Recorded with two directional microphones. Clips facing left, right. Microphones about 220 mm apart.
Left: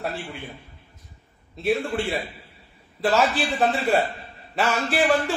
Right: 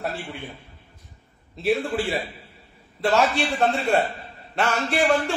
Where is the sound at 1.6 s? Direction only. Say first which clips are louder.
Right 1 dB; centre (ahead or behind).